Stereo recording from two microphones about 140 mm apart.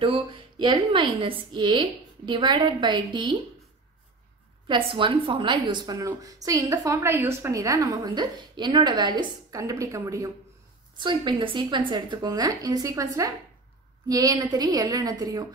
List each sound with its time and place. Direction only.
0.0 s a woman's voice: 40° right (ahead or behind)
4.6 s a woman's voice: 35° right (ahead or behind)
11.0 s a woman's voice: 35° right (ahead or behind)